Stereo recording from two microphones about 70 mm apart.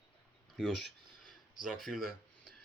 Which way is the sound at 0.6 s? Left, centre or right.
Centre.